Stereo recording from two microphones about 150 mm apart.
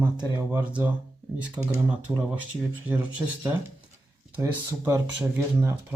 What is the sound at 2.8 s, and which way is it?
Speech, 5° right (ahead or behind).